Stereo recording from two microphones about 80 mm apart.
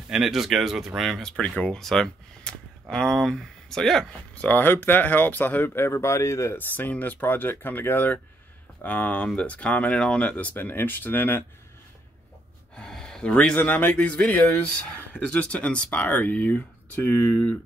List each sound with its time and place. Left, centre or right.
0.1 s speech: centre
1.3 s speech: centre
4.4 s speech: left
6.9 s speech: centre
12.7 s a sound: centre
13.6 s speech: left